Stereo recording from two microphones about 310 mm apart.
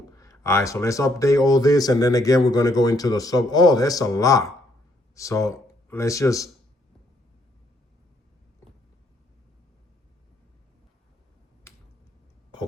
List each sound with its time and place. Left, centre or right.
0.2 s speech: centre